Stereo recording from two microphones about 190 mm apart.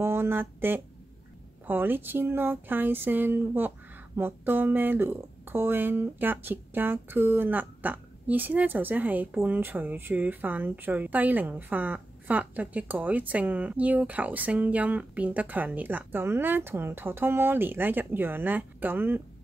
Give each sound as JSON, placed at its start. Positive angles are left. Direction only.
{"t": 0.0, "sound": "speech", "side_deg": -15}